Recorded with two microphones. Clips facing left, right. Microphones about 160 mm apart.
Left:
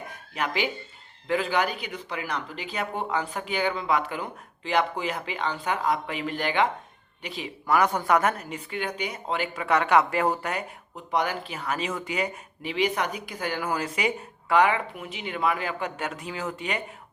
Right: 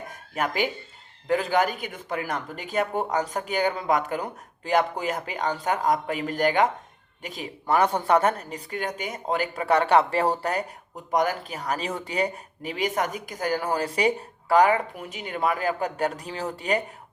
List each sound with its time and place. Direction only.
0.3 s speech: 45° right (ahead or behind)
7.7 s a woman's voice: 30° right (ahead or behind)